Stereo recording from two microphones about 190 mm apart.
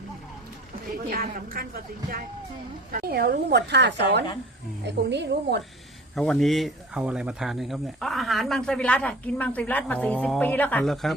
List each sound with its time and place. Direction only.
0.9 s a woman's voice: 50° right (ahead or behind)
6.1 s speech: centre (ahead or behind)